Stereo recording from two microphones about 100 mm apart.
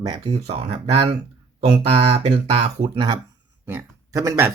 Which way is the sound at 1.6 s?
80° right.